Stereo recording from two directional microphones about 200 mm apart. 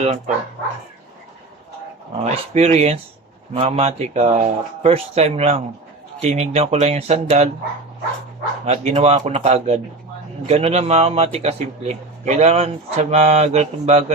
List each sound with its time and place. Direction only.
2.2 s a man's voice: 35° right (ahead or behind)
8.6 s a man's voice: 35° right (ahead or behind)